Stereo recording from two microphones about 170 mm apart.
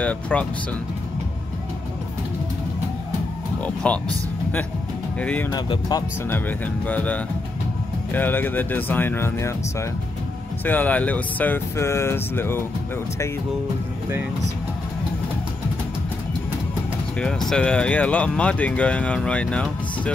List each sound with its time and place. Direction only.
0.0 s speech: 10° left (ahead or behind)
3.6 s speech: 10° left (ahead or behind)
5.2 s speech: 10° left (ahead or behind)
5.5 s speech: 25° left (ahead or behind)
6.2 s speech: 10° left (ahead or behind)
17.2 s speech: 5° left (ahead or behind)